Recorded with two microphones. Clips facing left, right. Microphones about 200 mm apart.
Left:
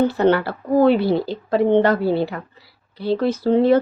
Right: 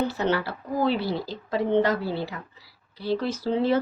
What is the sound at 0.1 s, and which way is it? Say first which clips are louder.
Speech: left 8 dB; 55° left (ahead or behind).